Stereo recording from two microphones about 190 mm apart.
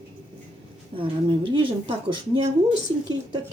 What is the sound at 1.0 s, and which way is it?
Speech, 25° right (ahead or behind).